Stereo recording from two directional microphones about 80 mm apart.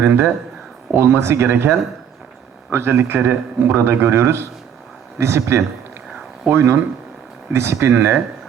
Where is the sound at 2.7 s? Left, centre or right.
Right.